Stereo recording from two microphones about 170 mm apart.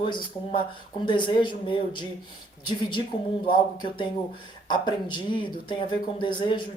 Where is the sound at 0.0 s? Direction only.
30° left (ahead or behind).